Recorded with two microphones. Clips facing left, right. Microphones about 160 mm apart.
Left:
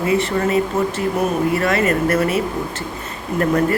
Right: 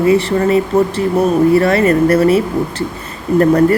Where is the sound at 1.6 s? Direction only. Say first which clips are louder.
Right 7 dB; 35° right (ahead or behind).